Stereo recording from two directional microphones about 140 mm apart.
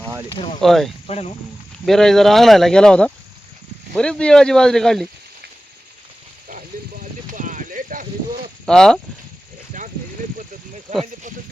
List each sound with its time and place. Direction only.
0.3 s speech: 40° left (ahead or behind)
0.6 s speech: centre (ahead or behind)
1.0 s speech: 45° left (ahead or behind)
1.9 s speech: 5° left (ahead or behind)
7.3 s a sound: 65° right (ahead or behind)
8.6 s speech: 5° left (ahead or behind)
9.7 s a sound: 65° right (ahead or behind)
11.0 s snake: 65° right (ahead or behind)